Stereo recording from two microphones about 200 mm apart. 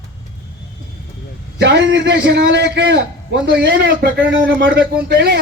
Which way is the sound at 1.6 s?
60° right (ahead or behind).